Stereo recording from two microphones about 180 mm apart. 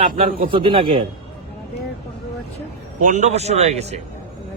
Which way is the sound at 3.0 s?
40° right (ahead or behind).